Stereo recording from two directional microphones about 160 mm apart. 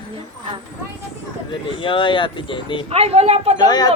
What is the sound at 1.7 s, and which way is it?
Speech, 30° left (ahead or behind).